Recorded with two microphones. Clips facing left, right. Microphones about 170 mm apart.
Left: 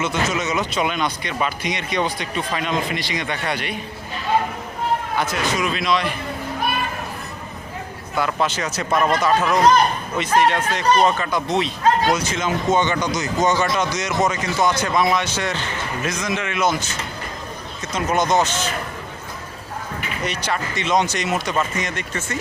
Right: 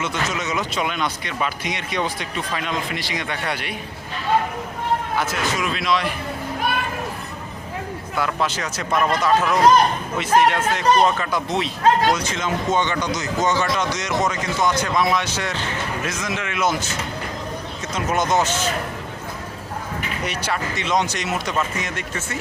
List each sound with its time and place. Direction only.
0.0 s speech: centre (ahead or behind)
5.2 s speech: centre (ahead or behind)
8.1 s speech: centre (ahead or behind)
17.9 s speech: 5° right (ahead or behind)
20.2 s speech: 10° right (ahead or behind)